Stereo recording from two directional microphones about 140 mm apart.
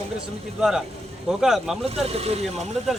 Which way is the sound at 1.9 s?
45° right (ahead or behind).